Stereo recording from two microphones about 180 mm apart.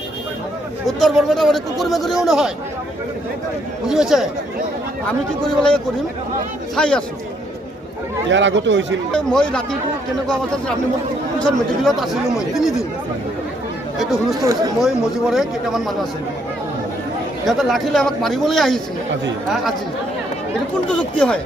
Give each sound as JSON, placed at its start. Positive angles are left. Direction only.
{"t": 0.9, "sound": "speech", "side_deg": 0}
{"t": 3.8, "sound": "speech", "side_deg": -5}
{"t": 5.4, "sound": "speech", "side_deg": 5}
{"t": 8.3, "sound": "speech", "side_deg": -90}
{"t": 9.1, "sound": "speech", "side_deg": 5}
{"t": 11.3, "sound": "speech", "side_deg": 5}
{"t": 14.0, "sound": "speech", "side_deg": 0}
{"t": 14.4, "sound": "speech", "side_deg": -20}
{"t": 14.8, "sound": "speech", "side_deg": 0}
{"t": 17.4, "sound": "speech", "side_deg": 0}
{"t": 20.9, "sound": "speech", "side_deg": 5}